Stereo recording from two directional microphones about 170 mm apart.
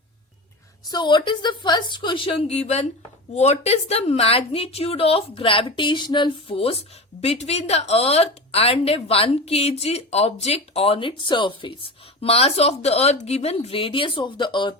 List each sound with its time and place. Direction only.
0.9 s a woman's voice: 25° left (ahead or behind)